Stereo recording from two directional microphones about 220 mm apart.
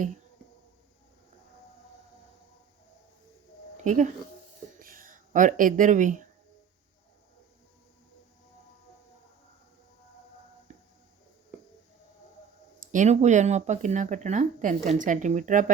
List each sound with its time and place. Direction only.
3.8 s speech: 35° right (ahead or behind)
12.9 s speech: 35° right (ahead or behind)